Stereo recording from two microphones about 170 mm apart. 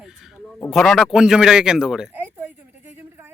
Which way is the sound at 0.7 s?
Centre (ahead or behind).